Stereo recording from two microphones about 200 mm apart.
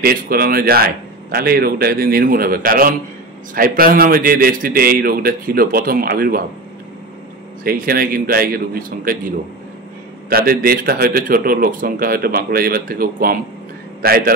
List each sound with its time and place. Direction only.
0.0 s a man's voice: 50° right (ahead or behind)
7.6 s a man's voice: 45° right (ahead or behind)
10.3 s a man's voice: 50° right (ahead or behind)